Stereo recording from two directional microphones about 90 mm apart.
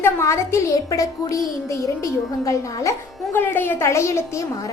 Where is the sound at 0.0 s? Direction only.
30° left (ahead or behind).